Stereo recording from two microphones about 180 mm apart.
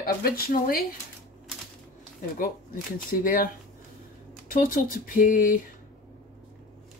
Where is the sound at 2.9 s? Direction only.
50° left (ahead or behind).